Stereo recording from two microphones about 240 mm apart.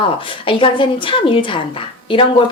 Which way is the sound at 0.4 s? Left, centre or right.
Left.